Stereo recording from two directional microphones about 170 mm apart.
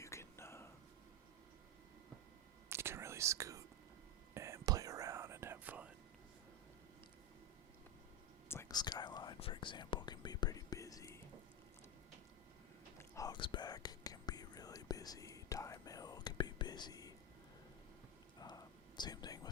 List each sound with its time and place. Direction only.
0.0 s whispering: 15° left (ahead or behind)
2.6 s whispering: 15° right (ahead or behind)
8.4 s whispering: 15° left (ahead or behind)
13.0 s whispering: 20° left (ahead or behind)
18.3 s whispering: 25° left (ahead or behind)